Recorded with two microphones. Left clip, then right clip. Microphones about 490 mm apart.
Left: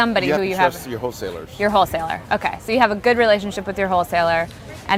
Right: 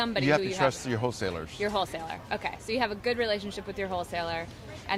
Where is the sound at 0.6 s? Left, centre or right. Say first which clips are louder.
Left 7 dB; right.